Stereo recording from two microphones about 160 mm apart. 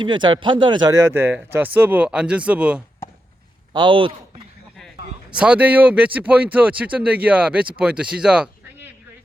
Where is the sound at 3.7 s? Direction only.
30° right (ahead or behind).